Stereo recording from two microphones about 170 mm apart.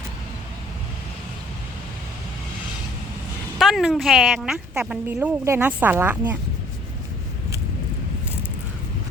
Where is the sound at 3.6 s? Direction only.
Centre (ahead or behind).